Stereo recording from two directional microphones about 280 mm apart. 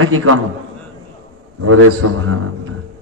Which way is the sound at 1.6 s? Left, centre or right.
Right.